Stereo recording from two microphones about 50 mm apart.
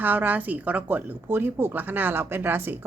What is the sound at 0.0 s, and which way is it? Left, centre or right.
Speech, right.